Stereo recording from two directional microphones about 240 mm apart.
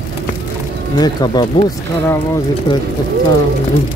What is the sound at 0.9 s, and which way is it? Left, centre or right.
Speech, centre.